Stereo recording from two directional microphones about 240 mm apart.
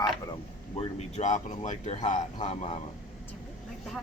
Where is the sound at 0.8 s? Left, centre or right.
Left.